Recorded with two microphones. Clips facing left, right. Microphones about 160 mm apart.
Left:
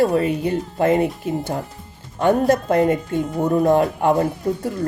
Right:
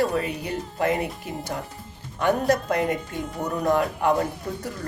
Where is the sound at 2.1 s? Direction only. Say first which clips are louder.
Left 5 dB; 25° left (ahead or behind).